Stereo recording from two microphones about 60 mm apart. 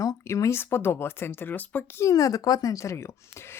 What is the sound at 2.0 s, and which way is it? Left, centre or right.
Speech, left.